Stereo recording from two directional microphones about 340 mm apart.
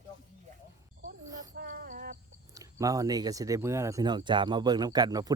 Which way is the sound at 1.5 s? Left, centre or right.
Right.